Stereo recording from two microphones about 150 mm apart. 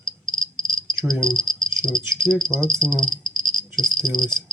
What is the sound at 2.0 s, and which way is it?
Speech, 20° right (ahead or behind).